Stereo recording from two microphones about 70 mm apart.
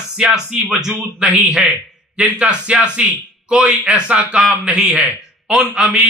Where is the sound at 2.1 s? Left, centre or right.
Centre.